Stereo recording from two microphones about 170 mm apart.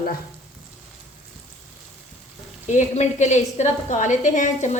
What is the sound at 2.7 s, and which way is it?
A woman's voice, 45° left (ahead or behind).